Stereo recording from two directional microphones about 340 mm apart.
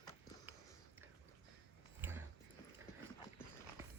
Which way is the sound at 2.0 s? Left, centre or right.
Centre.